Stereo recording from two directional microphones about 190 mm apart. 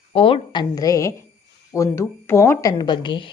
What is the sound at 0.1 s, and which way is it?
A woman's voice, 30° left (ahead or behind).